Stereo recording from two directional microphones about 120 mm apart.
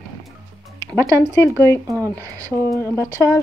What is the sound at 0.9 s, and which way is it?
Speech, 25° right (ahead or behind).